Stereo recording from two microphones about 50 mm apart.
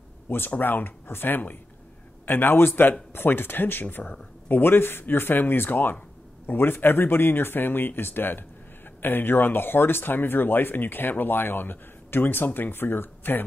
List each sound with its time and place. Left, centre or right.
0.6 s speech: left